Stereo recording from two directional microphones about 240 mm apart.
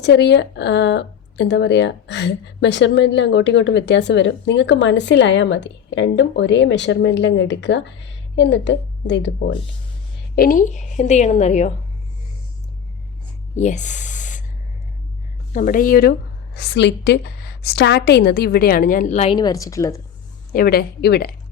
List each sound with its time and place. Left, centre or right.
0.0 s speech: left
10.3 s a woman's voice: left
13.6 s speech: left
15.5 s a woman's voice: left; by 20.0 s centre
20.5 s a woman's voice: left